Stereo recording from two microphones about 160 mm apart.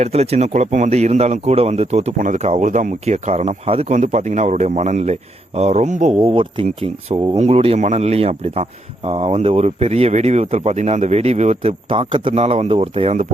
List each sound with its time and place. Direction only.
0.0 s speech: 40° right (ahead or behind)
6.1 s speech: 35° right (ahead or behind)